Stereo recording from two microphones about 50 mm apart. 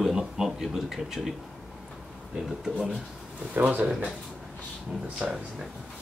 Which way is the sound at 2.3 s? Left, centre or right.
Centre.